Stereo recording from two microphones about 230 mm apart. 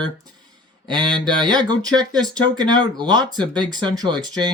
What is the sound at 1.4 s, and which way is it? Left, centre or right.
Speech, centre.